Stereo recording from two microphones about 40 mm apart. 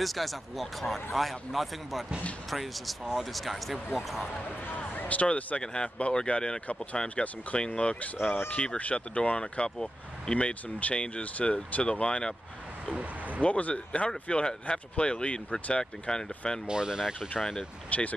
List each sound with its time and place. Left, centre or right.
0.0 s speech: centre
4.9 s speech: left
5.6 s speech: left
8.2 s speech: left
8.7 s speech: left
9.4 s speech: centre
10.3 s speech: left
13.4 s speech: left; by 16.6 s centre
16.6 s speech: centre
17.8 s speech: left